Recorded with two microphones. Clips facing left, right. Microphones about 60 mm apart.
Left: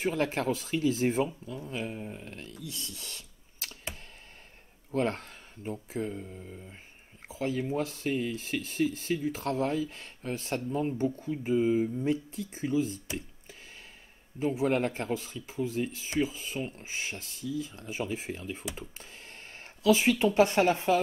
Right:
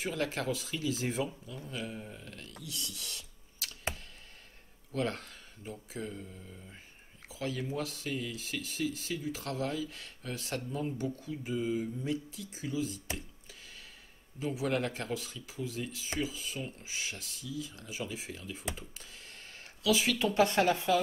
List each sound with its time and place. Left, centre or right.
0.0 s speech: left
4.9 s speech: left
7.2 s speech: left
14.4 s speech: left
18.8 s a sound: left
20.2 s speech: left